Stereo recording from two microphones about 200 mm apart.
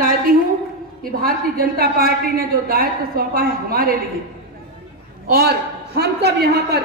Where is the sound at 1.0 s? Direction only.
45° right (ahead or behind).